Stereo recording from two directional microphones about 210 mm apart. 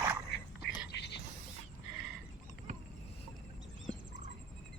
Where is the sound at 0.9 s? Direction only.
50° left (ahead or behind).